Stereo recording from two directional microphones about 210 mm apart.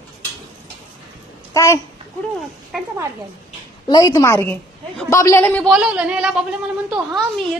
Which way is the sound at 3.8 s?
15° left (ahead or behind).